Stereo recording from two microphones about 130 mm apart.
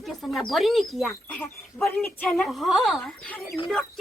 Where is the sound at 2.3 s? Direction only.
Centre (ahead or behind).